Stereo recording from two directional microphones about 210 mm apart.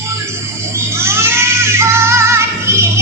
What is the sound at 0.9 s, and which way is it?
Child singing, 10° right (ahead or behind).